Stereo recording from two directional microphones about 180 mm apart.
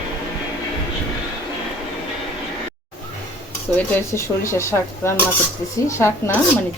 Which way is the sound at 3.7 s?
15° left (ahead or behind).